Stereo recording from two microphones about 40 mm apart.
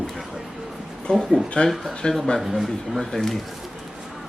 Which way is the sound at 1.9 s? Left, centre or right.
Centre.